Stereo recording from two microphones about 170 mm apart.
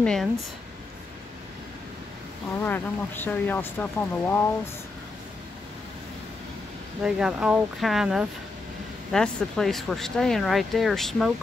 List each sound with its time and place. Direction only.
0.0 s speech: 5° left (ahead or behind)
2.6 s speech: 10° left (ahead or behind)
7.0 s speech: 5° right (ahead or behind)